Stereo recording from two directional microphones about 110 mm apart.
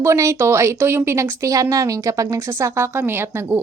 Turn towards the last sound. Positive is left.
turn(degrees=-20)  # may be behind; listen again after turning